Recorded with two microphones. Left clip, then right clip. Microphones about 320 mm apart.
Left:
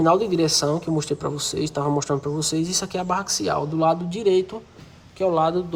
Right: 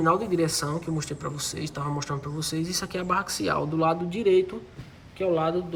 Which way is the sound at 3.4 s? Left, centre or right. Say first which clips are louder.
Left 5 dB; centre.